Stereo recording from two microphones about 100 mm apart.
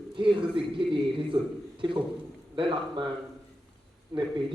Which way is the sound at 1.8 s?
50° right (ahead or behind).